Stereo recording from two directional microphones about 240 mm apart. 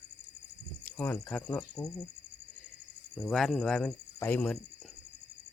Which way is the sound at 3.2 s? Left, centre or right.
Centre.